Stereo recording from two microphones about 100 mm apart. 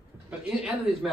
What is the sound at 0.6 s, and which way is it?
Speech, centre (ahead or behind).